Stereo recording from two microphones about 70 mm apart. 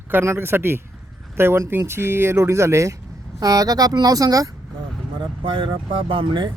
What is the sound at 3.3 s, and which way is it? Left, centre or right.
Speech, right.